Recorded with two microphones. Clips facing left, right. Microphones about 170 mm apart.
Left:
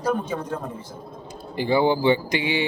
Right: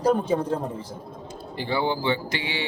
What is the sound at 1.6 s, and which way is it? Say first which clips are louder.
Speech: left 6 dB; 15° left (ahead or behind).